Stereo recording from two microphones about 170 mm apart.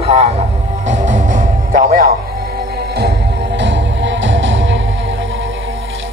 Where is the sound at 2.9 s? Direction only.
75° right (ahead or behind); by 4.8 s 90° right.